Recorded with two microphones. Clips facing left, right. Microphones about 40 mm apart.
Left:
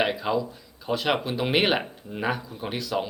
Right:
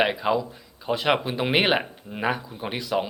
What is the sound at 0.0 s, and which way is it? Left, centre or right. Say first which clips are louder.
Speech: right 2 dB; centre.